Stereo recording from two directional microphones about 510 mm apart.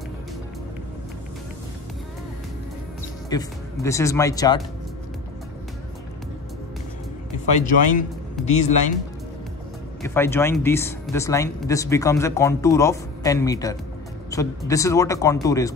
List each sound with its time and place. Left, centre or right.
3.3 s speech: centre
7.4 s speech: centre
10.0 s speech: centre